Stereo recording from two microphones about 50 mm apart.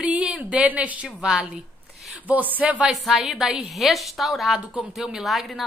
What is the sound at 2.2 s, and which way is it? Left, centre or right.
Speech, right.